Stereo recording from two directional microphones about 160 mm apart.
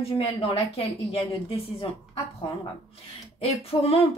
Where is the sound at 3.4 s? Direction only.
40° left (ahead or behind).